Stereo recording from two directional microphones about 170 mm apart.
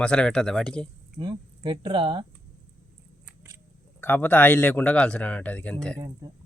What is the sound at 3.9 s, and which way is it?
A man's voice, 10° left (ahead or behind).